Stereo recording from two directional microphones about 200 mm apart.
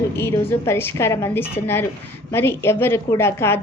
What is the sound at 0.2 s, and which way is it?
A woman's voice, 10° left (ahead or behind).